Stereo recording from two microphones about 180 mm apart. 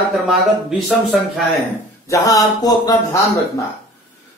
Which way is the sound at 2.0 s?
20° left (ahead or behind).